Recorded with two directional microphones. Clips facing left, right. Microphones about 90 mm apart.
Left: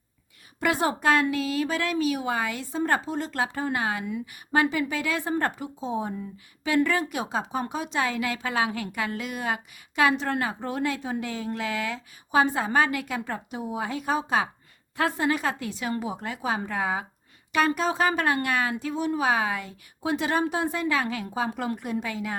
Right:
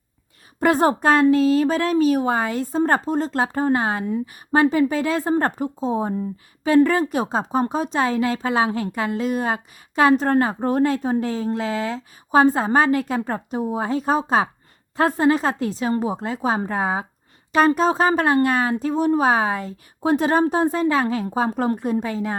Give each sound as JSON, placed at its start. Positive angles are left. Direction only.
{"t": 0.6, "sound": "speech", "side_deg": -40}